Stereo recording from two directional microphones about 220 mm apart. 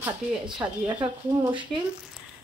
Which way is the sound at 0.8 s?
20° right (ahead or behind).